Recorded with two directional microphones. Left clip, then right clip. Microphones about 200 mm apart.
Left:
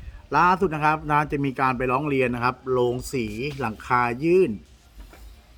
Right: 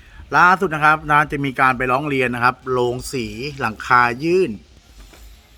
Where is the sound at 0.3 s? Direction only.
Centre (ahead or behind).